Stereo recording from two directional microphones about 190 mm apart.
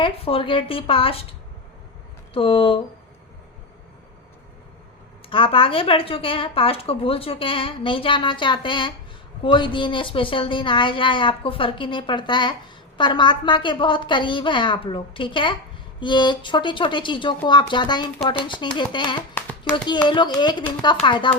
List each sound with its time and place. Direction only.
0.0 s a woman's voice: 30° left (ahead or behind)
5.3 s a woman's voice: 30° left (ahead or behind)